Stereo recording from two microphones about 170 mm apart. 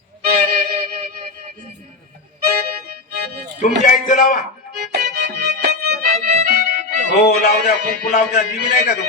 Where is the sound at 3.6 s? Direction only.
50° left (ahead or behind).